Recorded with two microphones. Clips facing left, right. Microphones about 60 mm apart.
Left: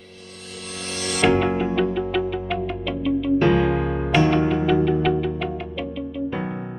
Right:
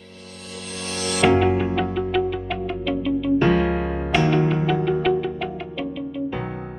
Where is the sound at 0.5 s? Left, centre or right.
Centre.